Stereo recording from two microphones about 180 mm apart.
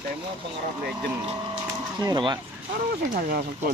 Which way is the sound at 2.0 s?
25° right (ahead or behind).